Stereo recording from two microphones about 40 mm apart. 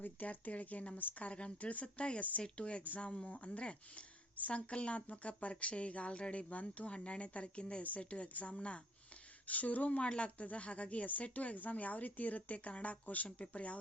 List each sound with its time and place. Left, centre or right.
0.0 s a woman's voice: left
3.2 s a woman's voice: left
9.5 s speech: left
10.1 s speech: left